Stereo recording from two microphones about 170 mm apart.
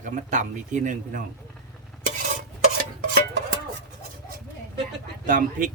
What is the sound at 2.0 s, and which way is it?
Stir, 50° right (ahead or behind).